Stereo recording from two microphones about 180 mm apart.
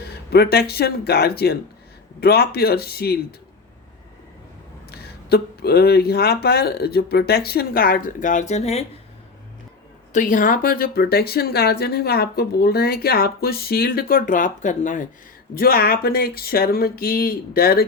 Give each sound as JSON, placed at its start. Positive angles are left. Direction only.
{"t": 0.3, "sound": "speech", "side_deg": 60}
{"t": 4.9, "sound": "speech", "side_deg": 60}
{"t": 10.1, "sound": "speech", "side_deg": 45}
{"t": 15.5, "sound": "speech", "side_deg": 55}